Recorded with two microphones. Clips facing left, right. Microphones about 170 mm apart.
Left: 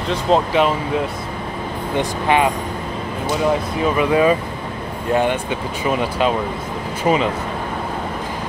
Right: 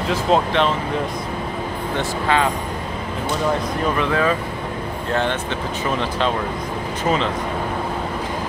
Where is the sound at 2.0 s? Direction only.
15° left (ahead or behind).